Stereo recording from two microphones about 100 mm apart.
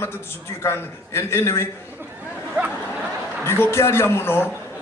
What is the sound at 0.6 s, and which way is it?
A man's voice, 25° left (ahead or behind).